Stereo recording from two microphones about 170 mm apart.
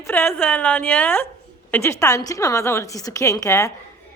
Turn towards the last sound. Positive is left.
turn(degrees=20)  # may be behind; listen again after turning